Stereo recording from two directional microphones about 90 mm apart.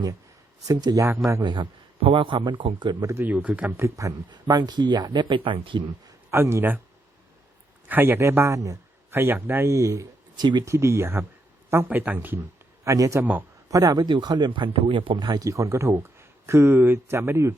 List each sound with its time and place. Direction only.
0.7 s speech: 45° right (ahead or behind)
2.0 s speech: 85° right; by 3.0 s 60° right (ahead or behind)
3.0 s speech: 35° right (ahead or behind)
3.2 s speech: 15° right (ahead or behind)
3.7 s speech: 30° right (ahead or behind)
4.3 s speech: 50° right (ahead or behind)
5.4 s speech: 70° right (ahead or behind)
6.3 s speech: 30° right (ahead or behind)
7.9 s speech: 25° right (ahead or behind)
9.0 s speech: 25° right (ahead or behind)
10.3 s speech: 50° right (ahead or behind)
10.7 s speech: 30° right (ahead or behind)
12.8 s a man's voice: 35° right (ahead or behind)
14.0 s speech: 55° right (ahead or behind); by 17.6 s 30° right (ahead or behind)